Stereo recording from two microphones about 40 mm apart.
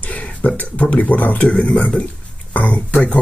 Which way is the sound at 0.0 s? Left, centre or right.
Left.